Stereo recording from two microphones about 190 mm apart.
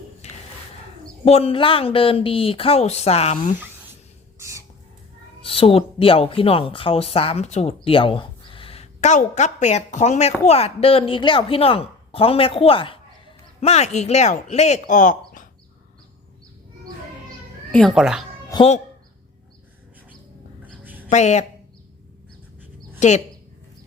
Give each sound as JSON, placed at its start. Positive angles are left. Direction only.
{"t": 1.3, "sound": "speech", "side_deg": 30}
{"t": 4.4, "sound": "squawk", "side_deg": -15}
{"t": 5.4, "sound": "speech", "side_deg": 30}
{"t": 17.7, "sound": "speech", "side_deg": 5}
{"t": 21.1, "sound": "speech", "side_deg": 35}
{"t": 23.0, "sound": "speech", "side_deg": 40}